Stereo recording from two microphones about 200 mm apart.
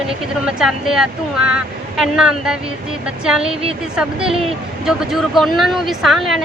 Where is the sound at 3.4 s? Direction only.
30° right (ahead or behind).